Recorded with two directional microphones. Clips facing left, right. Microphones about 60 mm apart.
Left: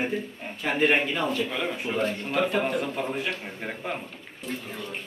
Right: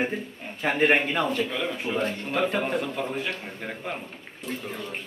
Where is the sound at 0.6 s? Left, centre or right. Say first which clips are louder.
Right 1 dB; right.